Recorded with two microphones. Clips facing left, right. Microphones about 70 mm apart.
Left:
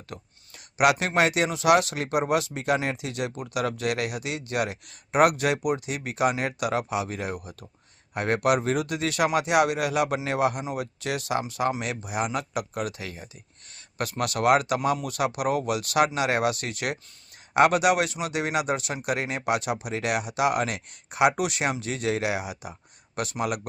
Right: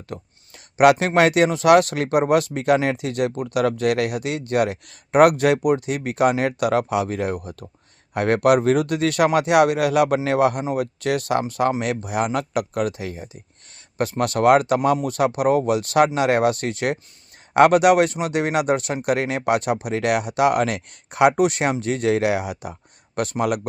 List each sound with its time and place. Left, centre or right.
0.1 s speech: right
12.9 s speech: right
17.5 s speech: right